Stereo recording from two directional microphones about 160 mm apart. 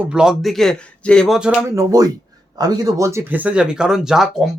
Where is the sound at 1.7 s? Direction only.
20° right (ahead or behind).